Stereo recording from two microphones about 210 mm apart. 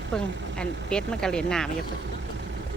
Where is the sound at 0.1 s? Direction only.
5° left (ahead or behind).